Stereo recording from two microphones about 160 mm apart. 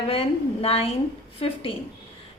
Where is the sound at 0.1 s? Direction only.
40° left (ahead or behind).